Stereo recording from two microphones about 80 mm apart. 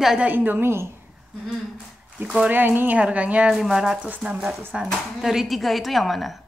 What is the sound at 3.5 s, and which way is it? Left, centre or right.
Speech, centre.